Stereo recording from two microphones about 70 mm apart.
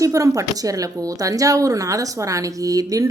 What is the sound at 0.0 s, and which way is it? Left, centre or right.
A woman's voice, right.